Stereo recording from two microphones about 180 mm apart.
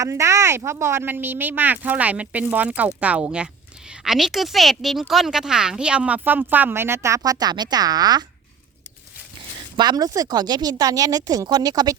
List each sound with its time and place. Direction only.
0.0 s speech: 15° right (ahead or behind)
9.7 s a woman's voice: 20° right (ahead or behind)